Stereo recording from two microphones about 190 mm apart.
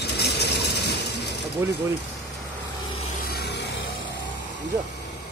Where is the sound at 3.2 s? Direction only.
55° left (ahead or behind).